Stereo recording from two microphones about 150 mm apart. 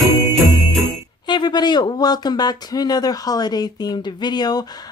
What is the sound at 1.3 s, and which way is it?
Speech, 30° left (ahead or behind).